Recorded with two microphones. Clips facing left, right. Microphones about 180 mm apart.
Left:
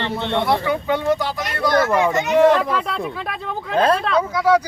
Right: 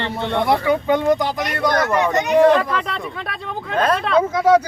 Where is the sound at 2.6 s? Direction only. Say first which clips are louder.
Even; centre (ahead or behind).